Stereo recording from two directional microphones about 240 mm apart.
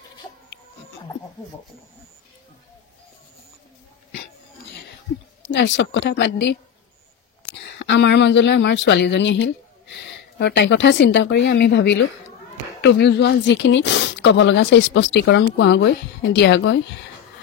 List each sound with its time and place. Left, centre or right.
5.5 s speech: left